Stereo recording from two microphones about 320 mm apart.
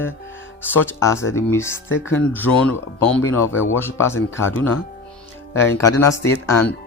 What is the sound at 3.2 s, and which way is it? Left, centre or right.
Speech, left.